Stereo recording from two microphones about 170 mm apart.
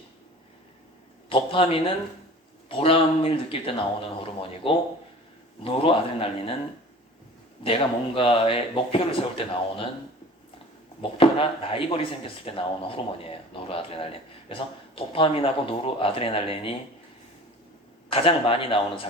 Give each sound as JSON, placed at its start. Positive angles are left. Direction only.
{"t": 1.3, "sound": "speech", "side_deg": 35}
{"t": 7.6, "sound": "speech", "side_deg": 30}
{"t": 11.2, "sound": "speech", "side_deg": 30}
{"t": 18.1, "sound": "speech", "side_deg": 30}